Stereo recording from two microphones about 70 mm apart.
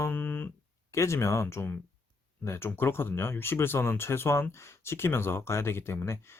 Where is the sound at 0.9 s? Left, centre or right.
Left.